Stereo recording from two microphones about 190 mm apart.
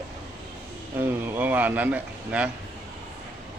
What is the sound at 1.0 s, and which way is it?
Speech, 10° right (ahead or behind).